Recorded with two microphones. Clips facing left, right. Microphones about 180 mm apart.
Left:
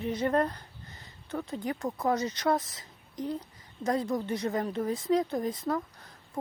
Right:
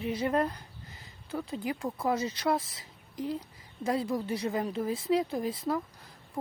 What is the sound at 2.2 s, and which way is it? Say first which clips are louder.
Speech: left 1 dB; 30° right (ahead or behind).